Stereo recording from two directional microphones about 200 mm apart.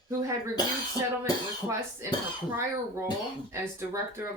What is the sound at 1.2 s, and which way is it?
Speech, 15° right (ahead or behind).